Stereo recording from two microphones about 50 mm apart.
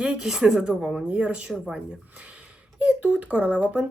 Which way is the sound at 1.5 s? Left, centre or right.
Centre.